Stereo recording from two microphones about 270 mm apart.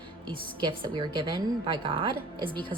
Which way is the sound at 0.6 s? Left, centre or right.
Centre.